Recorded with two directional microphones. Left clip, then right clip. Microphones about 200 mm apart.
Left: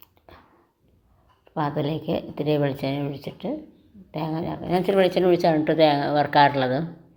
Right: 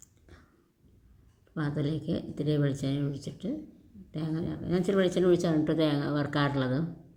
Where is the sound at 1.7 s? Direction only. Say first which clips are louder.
Left 4 dB; 55° left (ahead or behind).